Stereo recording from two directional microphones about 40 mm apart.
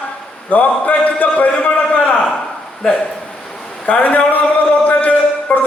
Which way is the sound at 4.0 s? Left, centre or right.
Left.